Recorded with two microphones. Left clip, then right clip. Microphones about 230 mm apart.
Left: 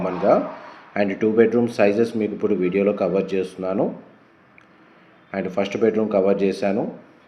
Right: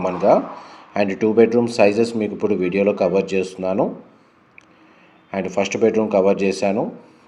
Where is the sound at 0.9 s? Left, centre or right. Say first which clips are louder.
Right 2 dB; right.